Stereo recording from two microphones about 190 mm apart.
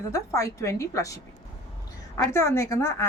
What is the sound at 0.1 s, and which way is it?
A woman's voice, 15° left (ahead or behind).